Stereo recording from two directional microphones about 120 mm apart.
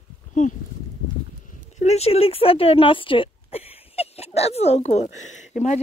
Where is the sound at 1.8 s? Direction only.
60° left (ahead or behind); by 5.8 s 90° left.